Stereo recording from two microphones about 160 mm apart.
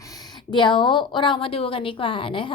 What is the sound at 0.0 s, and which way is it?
A woman's voice, 25° left (ahead or behind).